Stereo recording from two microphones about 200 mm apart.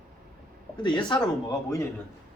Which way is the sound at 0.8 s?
20° left (ahead or behind).